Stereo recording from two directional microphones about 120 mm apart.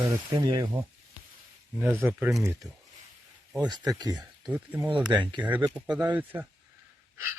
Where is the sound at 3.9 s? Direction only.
35° right (ahead or behind).